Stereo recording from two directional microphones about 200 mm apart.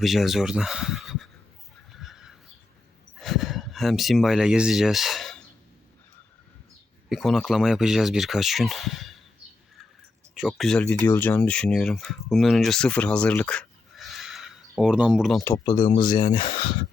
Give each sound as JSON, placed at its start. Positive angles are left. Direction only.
{"t": 0.0, "sound": "speech", "side_deg": 0}
{"t": 1.9, "sound": "neigh", "side_deg": 0}
{"t": 3.2, "sound": "speech", "side_deg": 0}
{"t": 7.1, "sound": "speech", "side_deg": 0}
{"t": 10.3, "sound": "speech", "side_deg": 0}
{"t": 15.4, "sound": "speech", "side_deg": 20}